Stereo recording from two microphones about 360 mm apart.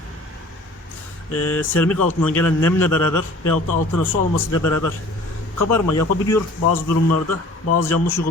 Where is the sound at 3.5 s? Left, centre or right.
Left.